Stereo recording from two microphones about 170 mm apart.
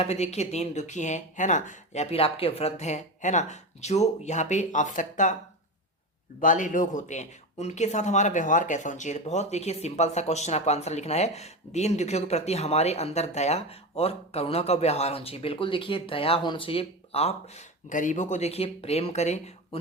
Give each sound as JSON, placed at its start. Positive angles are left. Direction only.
{"t": 0.0, "sound": "speech", "side_deg": 40}
{"t": 6.4, "sound": "speech", "side_deg": 50}